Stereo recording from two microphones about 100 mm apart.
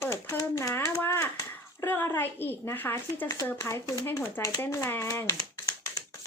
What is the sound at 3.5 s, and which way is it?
Speech, 30° left (ahead or behind).